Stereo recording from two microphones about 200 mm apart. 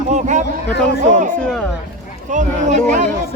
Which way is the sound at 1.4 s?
5° left (ahead or behind).